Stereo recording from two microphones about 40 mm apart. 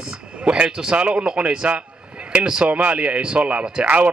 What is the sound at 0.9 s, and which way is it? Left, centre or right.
Speech, right.